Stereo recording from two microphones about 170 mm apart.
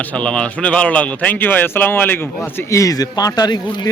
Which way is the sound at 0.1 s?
5° left (ahead or behind).